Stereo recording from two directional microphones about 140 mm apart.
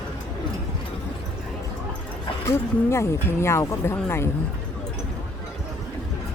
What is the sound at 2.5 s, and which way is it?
Speech, 20° left (ahead or behind).